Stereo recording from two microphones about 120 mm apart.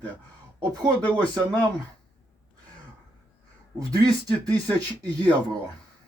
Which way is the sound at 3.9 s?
30° right (ahead or behind).